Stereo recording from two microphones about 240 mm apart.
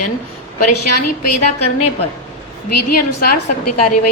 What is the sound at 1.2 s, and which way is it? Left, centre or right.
A woman's voice, left.